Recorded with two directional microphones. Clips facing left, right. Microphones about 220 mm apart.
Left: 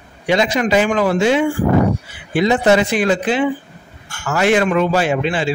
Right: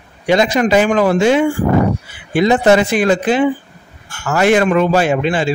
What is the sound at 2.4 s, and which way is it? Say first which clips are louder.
Speech: right 2 dB; 50° right (ahead or behind).